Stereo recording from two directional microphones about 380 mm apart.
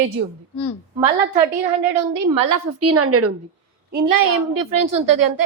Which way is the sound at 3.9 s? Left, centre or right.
Right.